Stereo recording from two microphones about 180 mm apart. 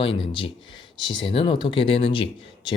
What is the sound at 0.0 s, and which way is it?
Speech, 30° left (ahead or behind).